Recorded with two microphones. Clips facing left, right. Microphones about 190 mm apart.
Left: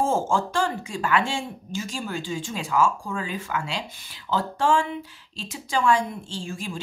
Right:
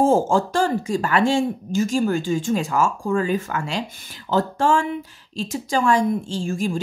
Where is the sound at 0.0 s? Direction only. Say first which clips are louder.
Right 6 dB; 40° right (ahead or behind).